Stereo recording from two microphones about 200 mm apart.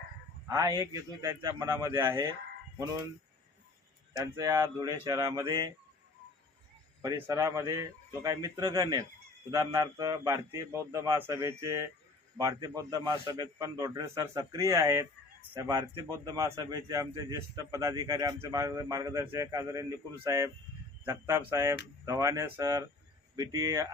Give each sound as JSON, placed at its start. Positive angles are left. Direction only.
{"t": 0.4, "sound": "a man's voice", "side_deg": -15}
{"t": 4.1, "sound": "a man's voice", "side_deg": -15}
{"t": 7.0, "sound": "a man's voice", "side_deg": -15}